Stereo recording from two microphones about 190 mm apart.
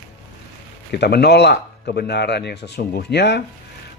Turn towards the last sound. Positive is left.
turn(degrees=60)  # may be behind; listen again after turning